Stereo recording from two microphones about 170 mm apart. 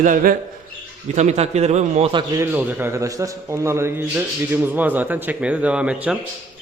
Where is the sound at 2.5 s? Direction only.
10° right (ahead or behind).